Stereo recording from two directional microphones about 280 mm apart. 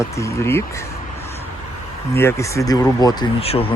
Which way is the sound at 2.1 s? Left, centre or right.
Centre.